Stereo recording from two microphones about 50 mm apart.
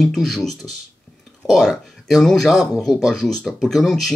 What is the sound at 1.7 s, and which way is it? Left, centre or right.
Speech, centre.